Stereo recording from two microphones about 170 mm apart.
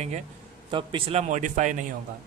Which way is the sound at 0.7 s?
30° right (ahead or behind).